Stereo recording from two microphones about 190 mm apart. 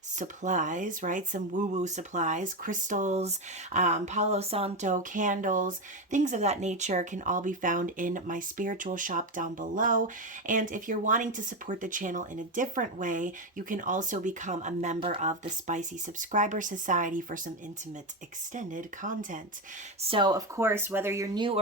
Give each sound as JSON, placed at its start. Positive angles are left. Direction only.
{"t": 0.2, "sound": "speech", "side_deg": -40}
{"t": 18.5, "sound": "speech", "side_deg": -45}
{"t": 20.0, "sound": "speech", "side_deg": -30}
{"t": 20.6, "sound": "speech", "side_deg": -10}